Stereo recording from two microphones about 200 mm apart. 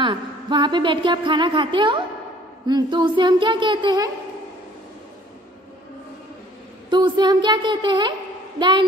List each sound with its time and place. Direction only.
0.0 s a woman's voice: 25° right (ahead or behind)
6.9 s a woman's voice: 20° right (ahead or behind)